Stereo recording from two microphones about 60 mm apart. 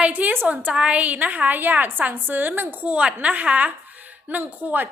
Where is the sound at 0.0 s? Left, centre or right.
Right.